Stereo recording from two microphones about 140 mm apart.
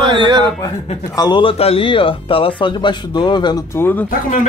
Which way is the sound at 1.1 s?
30° left (ahead or behind).